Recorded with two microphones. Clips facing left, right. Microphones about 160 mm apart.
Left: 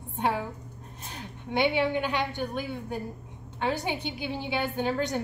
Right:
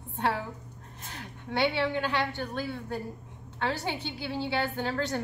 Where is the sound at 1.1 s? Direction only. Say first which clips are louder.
Left 3 dB; 15° left (ahead or behind).